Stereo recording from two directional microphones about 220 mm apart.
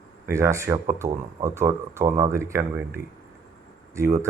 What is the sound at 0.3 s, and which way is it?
Speech, 15° right (ahead or behind).